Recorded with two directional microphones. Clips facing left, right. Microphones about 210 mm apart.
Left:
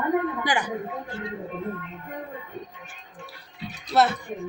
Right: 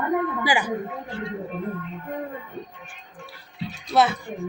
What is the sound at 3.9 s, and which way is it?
Speech, centre (ahead or behind).